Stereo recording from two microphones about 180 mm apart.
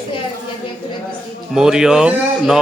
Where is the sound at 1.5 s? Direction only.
5° right (ahead or behind).